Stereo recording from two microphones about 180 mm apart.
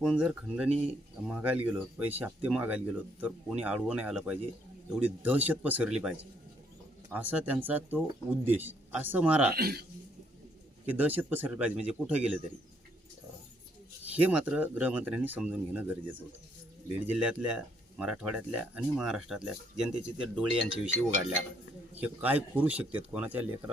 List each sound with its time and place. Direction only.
0.0 s speech: centre (ahead or behind)
9.6 s speech: 60° right (ahead or behind)
10.8 s speech: 10° right (ahead or behind)
14.0 s speech: 10° right (ahead or behind)
17.1 s speech: 5° right (ahead or behind)